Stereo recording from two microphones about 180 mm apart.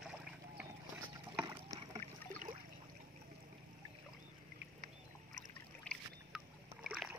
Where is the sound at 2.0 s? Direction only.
50° right (ahead or behind).